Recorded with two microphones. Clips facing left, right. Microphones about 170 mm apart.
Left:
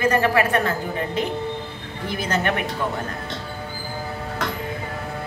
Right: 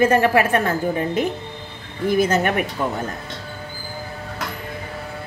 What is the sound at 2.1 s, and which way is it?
Speech, 45° right (ahead or behind).